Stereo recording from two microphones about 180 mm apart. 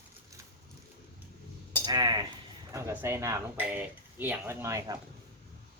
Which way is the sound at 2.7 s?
15° right (ahead or behind).